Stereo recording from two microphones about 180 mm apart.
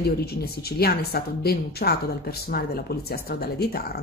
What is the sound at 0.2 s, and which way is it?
Speech, 60° left (ahead or behind).